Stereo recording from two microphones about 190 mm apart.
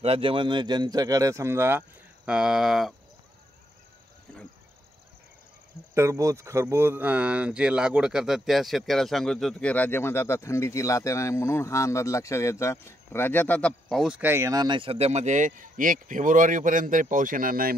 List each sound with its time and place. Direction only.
0.0 s speech: 30° right (ahead or behind); by 2.9 s centre (ahead or behind)
5.9 s speech: 15° right (ahead or behind); by 17.7 s 50° right (ahead or behind)